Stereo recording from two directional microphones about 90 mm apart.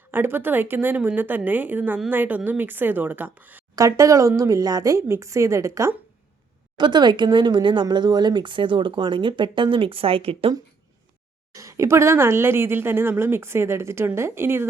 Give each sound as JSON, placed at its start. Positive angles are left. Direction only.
{"t": 0.1, "sound": "a woman's voice", "side_deg": -25}
{"t": 3.8, "sound": "speech", "side_deg": -40}
{"t": 6.7, "sound": "speech", "side_deg": -60}
{"t": 11.5, "sound": "a woman's voice", "side_deg": -35}